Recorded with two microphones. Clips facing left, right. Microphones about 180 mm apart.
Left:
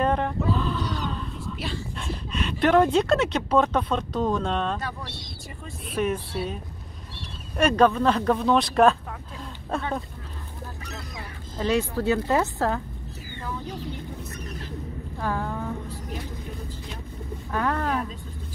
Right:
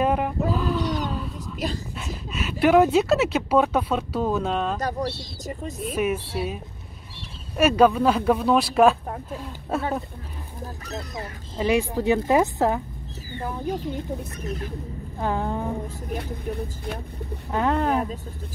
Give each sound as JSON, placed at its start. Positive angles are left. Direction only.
{"t": 0.0, "sound": "roaring cats", "side_deg": -10}
{"t": 1.6, "sound": "a sound", "side_deg": -40}
{"t": 2.0, "sound": "speech", "side_deg": -5}
{"t": 5.0, "sound": "speech", "side_deg": -40}
{"t": 5.9, "sound": "speech", "side_deg": -10}
{"t": 11.5, "sound": "speech", "side_deg": -10}
{"t": 15.1, "sound": "a sound", "side_deg": -20}
{"t": 17.5, "sound": "speech", "side_deg": -20}